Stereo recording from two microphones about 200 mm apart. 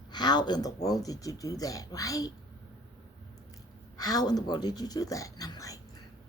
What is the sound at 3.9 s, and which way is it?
Speech, 20° left (ahead or behind).